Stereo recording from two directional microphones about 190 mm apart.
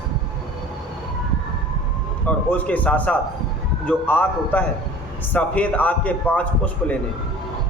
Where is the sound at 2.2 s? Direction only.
10° left (ahead or behind).